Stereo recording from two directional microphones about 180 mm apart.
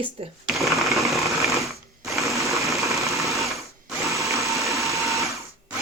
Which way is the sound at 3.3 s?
Centre (ahead or behind).